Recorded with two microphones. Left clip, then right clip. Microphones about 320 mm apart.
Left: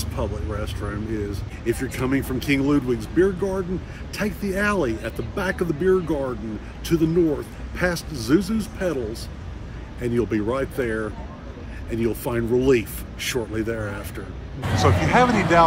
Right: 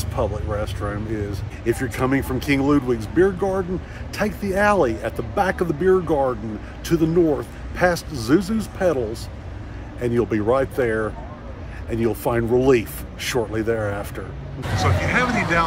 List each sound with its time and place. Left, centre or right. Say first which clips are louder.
0.0 s a man's voice: right 5 dB; centre
14.8 s speech: left 3 dB; centre